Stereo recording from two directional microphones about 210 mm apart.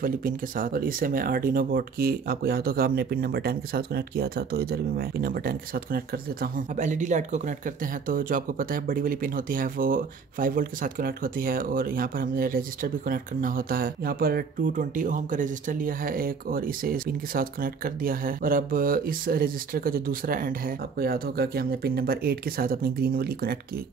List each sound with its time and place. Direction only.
0.0 s speech: 40° right (ahead or behind)